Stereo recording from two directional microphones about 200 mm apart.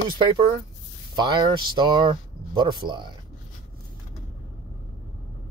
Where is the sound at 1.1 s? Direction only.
20° right (ahead or behind).